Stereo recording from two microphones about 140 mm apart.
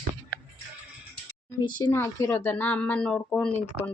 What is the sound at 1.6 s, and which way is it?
Speech, 30° left (ahead or behind).